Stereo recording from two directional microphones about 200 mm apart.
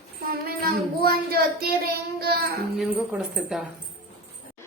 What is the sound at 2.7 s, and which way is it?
Speech, centre (ahead or behind).